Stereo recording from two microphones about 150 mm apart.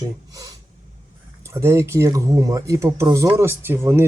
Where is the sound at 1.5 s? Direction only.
20° right (ahead or behind).